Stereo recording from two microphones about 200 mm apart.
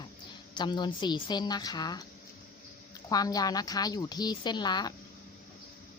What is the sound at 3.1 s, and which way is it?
A woman's voice, 20° left (ahead or behind).